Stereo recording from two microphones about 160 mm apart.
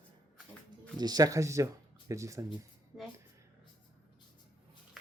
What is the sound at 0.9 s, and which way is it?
Speech, 25° right (ahead or behind).